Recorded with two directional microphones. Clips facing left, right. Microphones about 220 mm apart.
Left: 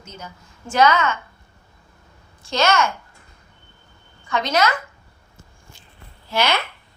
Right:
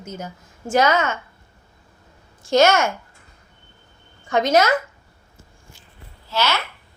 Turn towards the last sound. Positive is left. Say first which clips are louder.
# left 2 dB
turn(degrees=15)  # may be behind; listen again after turning